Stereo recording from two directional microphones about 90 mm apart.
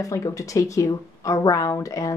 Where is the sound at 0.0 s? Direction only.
40° left (ahead or behind).